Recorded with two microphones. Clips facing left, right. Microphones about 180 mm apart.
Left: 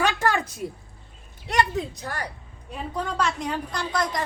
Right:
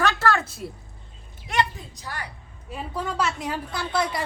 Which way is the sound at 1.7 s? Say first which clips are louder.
Left 14 dB; 80° left.